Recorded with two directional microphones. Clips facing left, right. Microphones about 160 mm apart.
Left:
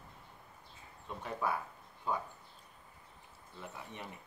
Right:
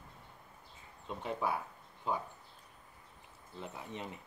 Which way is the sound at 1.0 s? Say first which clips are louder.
Right 1 dB; 20° right (ahead or behind).